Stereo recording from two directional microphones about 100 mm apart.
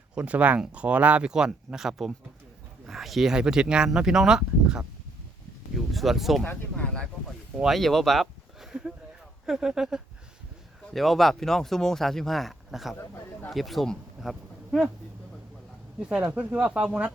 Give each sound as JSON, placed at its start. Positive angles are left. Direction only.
{"t": 0.1, "sound": "speech", "side_deg": -10}
{"t": 6.4, "sound": "speech", "side_deg": 15}
{"t": 7.5, "sound": "speech", "side_deg": -5}
{"t": 16.0, "sound": "speech", "side_deg": -10}